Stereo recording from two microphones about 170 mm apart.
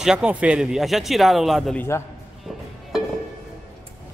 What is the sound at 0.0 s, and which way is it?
Speech, 5° right (ahead or behind).